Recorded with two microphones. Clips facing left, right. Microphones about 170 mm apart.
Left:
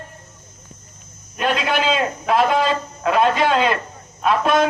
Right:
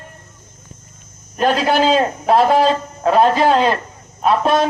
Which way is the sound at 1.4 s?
35° right (ahead or behind).